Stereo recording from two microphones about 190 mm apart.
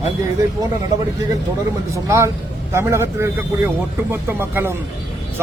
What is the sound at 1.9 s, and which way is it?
A man's voice, 15° right (ahead or behind).